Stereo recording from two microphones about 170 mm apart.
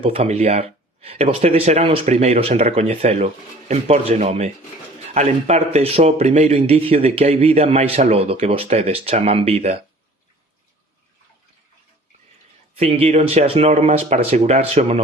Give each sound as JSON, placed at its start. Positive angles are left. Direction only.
{"t": 0.0, "sound": "speech", "side_deg": -35}
{"t": 12.7, "sound": "speech", "side_deg": -35}